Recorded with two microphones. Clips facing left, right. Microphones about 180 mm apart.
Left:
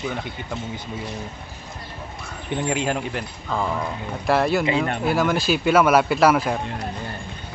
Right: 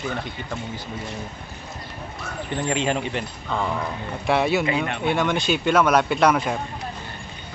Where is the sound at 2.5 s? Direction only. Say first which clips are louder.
Even; 10° left (ahead or behind).